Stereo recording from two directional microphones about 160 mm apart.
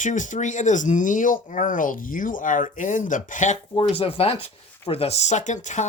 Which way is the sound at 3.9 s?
40° left (ahead or behind).